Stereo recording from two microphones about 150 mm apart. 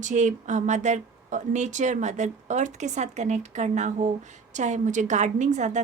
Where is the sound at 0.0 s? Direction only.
55° right (ahead or behind).